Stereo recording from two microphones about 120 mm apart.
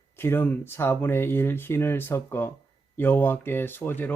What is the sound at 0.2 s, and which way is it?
Speech, 20° left (ahead or behind).